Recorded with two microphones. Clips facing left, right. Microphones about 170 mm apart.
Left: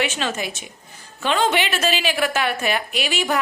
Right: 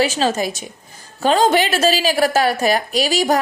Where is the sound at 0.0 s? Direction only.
35° right (ahead or behind).